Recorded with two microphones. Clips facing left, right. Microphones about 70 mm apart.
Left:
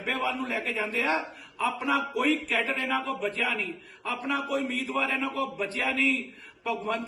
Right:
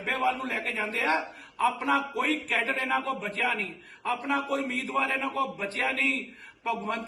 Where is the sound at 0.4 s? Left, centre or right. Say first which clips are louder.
Left 1 dB; right.